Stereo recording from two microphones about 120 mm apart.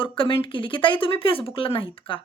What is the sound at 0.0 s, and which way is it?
A woman's voice, 45° left (ahead or behind).